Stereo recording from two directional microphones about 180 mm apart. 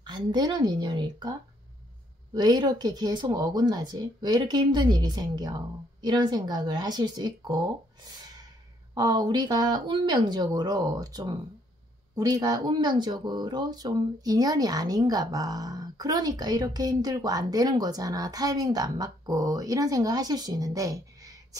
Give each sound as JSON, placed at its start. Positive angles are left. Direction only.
{"t": 0.0, "sound": "speech", "side_deg": -25}
{"t": 2.3, "sound": "speech", "side_deg": -25}